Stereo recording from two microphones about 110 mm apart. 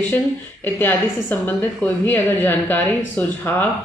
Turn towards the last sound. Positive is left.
turn(degrees=15)  # may be behind; listen again after turning